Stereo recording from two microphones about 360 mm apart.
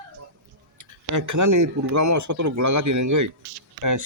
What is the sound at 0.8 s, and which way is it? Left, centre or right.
Speech, right.